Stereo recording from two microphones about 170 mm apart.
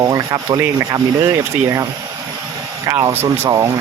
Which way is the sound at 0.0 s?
20° right (ahead or behind).